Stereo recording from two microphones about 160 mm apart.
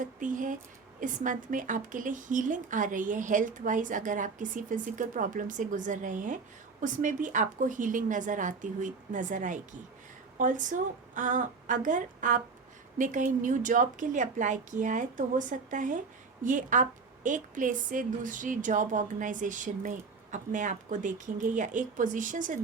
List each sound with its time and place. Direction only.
0.0 s a woman's voice: 55° right (ahead or behind)